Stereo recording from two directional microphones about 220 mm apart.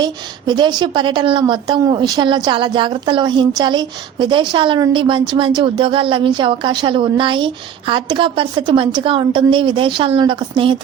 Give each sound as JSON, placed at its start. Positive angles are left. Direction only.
{"t": 0.0, "sound": "a woman's voice", "side_deg": -20}